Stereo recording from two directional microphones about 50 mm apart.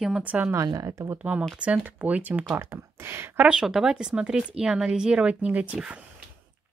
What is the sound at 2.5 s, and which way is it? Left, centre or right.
Speech, right.